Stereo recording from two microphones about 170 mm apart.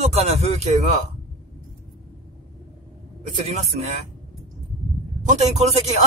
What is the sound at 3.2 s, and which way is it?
Speech, 35° right (ahead or behind).